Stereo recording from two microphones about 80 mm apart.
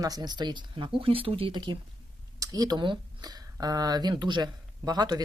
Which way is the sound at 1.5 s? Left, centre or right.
Right.